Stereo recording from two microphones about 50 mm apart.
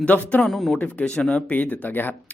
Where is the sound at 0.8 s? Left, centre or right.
Left.